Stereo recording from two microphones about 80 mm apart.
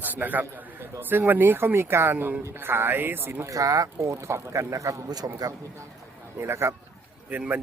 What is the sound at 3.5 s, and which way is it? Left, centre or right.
Speech, right.